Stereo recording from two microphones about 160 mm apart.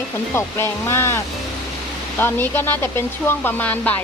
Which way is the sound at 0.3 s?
15° left (ahead or behind).